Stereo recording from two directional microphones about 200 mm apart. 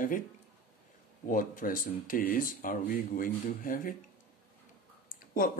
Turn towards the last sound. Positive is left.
turn(degrees=45)  # may be behind; listen again after turning